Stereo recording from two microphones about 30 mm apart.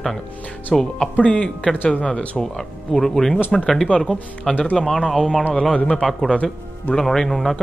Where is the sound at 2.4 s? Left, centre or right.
Centre.